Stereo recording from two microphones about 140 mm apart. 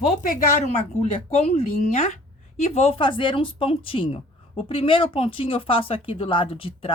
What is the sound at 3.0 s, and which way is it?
Speech, 40° left (ahead or behind).